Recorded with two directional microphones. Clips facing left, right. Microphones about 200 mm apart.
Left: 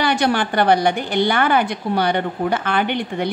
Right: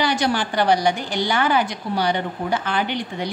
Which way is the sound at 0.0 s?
60° left (ahead or behind).